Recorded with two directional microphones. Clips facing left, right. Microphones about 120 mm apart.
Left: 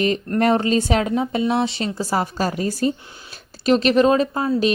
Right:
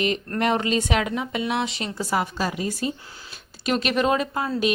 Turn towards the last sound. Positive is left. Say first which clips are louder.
# left 4 dB
turn(degrees=30)  # may be behind; listen again after turning